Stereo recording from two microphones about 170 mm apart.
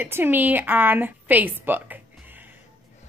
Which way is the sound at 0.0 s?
10° right (ahead or behind).